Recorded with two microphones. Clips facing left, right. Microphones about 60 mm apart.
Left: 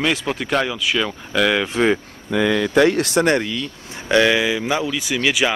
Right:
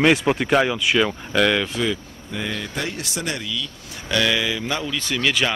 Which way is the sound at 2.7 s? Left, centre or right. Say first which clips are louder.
Left 13 dB; left.